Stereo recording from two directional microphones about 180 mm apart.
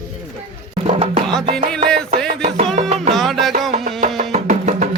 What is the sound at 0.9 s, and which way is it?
Music, 35° right (ahead or behind).